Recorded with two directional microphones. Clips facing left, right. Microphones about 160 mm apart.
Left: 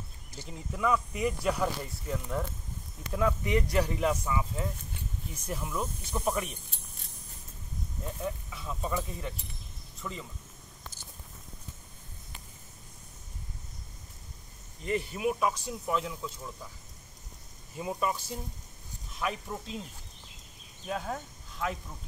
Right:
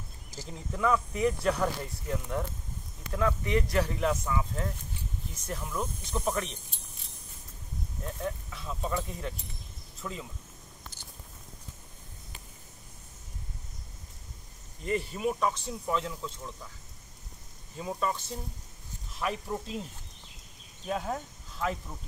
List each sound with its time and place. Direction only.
0.5 s speech: 5° left (ahead or behind)
3.1 s speech: 15° left (ahead or behind)
8.0 s speech: 5° left (ahead or behind)
14.9 s speech: centre (ahead or behind)
17.7 s speech: 10° left (ahead or behind)
19.1 s speech: centre (ahead or behind)
20.9 s speech: 5° right (ahead or behind)